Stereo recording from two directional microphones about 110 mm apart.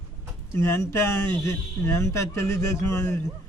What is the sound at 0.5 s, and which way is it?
A man's voice, 20° left (ahead or behind).